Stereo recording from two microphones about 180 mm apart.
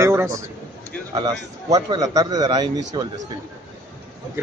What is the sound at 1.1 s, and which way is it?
Speech, 20° right (ahead or behind).